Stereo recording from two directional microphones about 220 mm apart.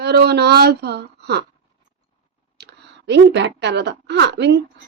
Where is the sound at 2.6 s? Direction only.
50° right (ahead or behind).